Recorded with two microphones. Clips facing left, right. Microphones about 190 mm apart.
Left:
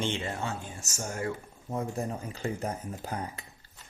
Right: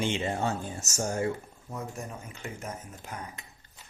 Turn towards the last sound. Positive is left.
turn(degrees=35)  # may be behind; listen again after turning